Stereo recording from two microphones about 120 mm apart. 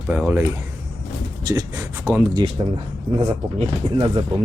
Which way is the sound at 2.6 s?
45° right (ahead or behind).